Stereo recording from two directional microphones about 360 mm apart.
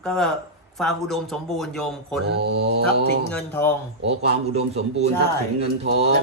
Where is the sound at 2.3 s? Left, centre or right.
Right.